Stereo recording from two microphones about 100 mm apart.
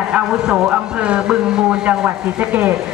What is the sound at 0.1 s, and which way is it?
A woman's voice, 5° right (ahead or behind).